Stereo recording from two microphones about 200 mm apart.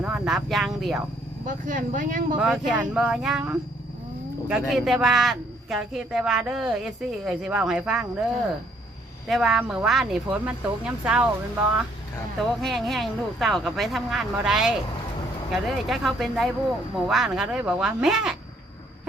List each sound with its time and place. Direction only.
0.0 s a man's voice: 5° right (ahead or behind)
1.5 s speech: 40° right (ahead or behind)
2.4 s a man's voice: 5° right (ahead or behind)